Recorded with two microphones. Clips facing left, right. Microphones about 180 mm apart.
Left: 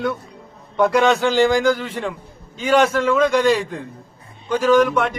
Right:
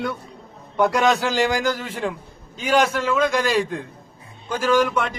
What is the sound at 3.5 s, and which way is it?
A man's voice, centre (ahead or behind).